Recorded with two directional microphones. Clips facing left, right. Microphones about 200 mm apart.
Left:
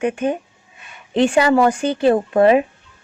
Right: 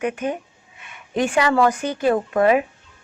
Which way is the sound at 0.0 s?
30° left (ahead or behind).